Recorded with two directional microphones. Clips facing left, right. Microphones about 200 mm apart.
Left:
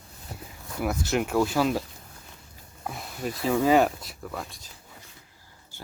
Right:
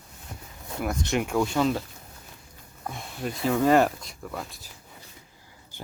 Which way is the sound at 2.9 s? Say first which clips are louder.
Even; centre (ahead or behind).